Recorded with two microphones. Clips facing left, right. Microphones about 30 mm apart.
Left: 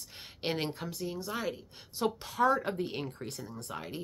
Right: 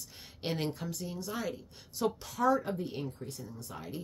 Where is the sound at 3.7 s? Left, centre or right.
Left.